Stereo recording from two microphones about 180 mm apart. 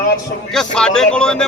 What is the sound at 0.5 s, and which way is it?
Speech, 5° left (ahead or behind).